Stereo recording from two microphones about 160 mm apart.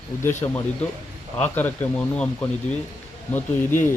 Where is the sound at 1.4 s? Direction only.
10° left (ahead or behind).